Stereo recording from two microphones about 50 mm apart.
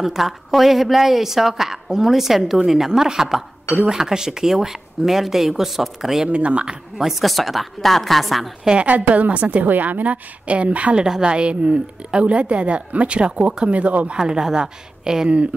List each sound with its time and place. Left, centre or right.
0.0 s a woman's voice: centre
6.2 s a woman's voice: right
7.1 s a woman's voice: centre
8.8 s a woman's voice: right
11.0 s a woman's voice: centre
14.1 s a woman's voice: centre